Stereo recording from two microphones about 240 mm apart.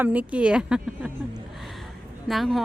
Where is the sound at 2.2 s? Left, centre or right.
Centre.